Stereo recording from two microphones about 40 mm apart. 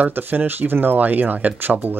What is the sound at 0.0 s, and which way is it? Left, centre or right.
Speech, right.